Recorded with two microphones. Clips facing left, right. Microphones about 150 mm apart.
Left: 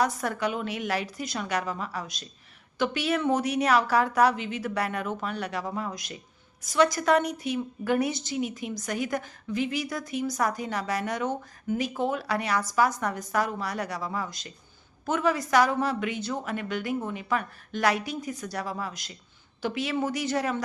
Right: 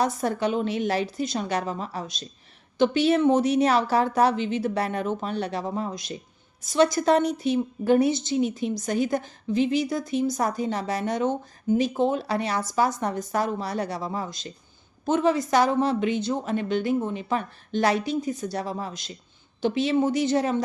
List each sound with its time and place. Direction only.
0.0 s a woman's voice: 25° right (ahead or behind)